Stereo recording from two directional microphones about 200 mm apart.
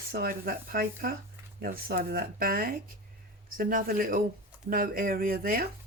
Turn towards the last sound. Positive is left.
turn(degrees=-45)  # may be behind; listen again after turning